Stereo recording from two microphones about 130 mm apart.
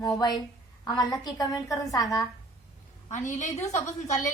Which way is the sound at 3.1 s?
70° left (ahead or behind).